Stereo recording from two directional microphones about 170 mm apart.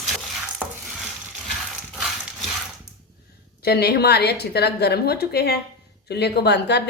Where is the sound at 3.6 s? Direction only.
70° left (ahead or behind).